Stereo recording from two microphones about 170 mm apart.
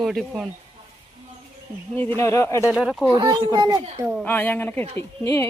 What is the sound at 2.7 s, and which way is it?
Speech, centre (ahead or behind).